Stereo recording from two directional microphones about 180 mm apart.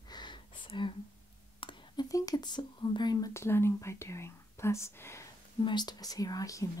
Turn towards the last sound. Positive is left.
turn(degrees=20)  # may be behind; listen again after turning